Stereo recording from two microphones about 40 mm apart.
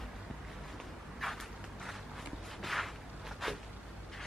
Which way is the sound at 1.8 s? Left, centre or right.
Centre.